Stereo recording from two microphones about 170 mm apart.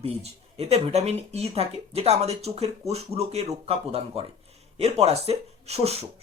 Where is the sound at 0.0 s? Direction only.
35° right (ahead or behind).